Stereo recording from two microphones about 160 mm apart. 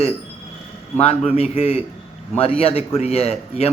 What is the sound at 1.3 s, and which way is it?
A man's voice, 40° left (ahead or behind).